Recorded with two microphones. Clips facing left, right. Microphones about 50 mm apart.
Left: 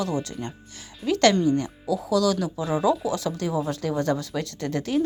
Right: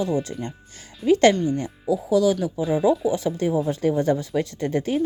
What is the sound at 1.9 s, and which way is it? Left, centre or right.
Speech, left.